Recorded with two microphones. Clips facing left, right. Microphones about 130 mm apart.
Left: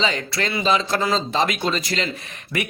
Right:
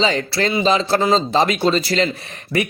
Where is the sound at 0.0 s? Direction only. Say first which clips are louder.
Right 5 dB; 35° right (ahead or behind).